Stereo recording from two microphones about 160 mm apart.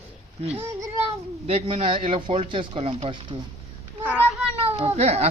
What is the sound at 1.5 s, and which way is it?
Speech, 35° right (ahead or behind).